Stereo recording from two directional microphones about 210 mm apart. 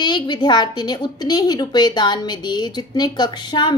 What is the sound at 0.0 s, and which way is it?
A woman's voice, 20° left (ahead or behind).